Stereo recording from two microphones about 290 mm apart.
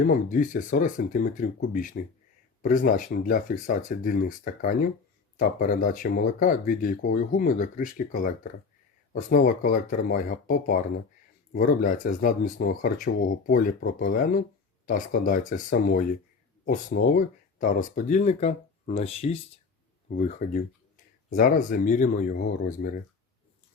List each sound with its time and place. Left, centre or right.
0.0 s speech: left